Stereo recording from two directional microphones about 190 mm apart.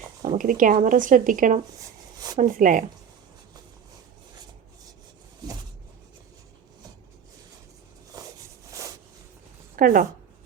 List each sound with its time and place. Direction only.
0.2 s speech: 45° right (ahead or behind)
2.1 s a sound: 20° right (ahead or behind)
2.4 s speech: 45° right (ahead or behind)
9.7 s a woman's voice: 45° right (ahead or behind)